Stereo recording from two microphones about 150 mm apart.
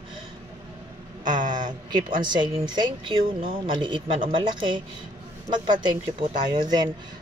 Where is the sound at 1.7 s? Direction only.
30° right (ahead or behind).